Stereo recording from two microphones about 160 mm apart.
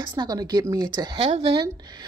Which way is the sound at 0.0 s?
25° right (ahead or behind).